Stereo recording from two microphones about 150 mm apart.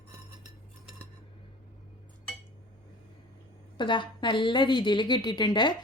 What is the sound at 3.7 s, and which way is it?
A woman's voice, 30° left (ahead or behind).